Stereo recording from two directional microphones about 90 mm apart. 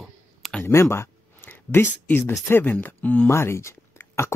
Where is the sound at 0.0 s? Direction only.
Centre (ahead or behind).